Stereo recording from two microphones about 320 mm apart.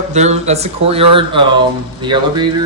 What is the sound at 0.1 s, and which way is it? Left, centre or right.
Speech, right.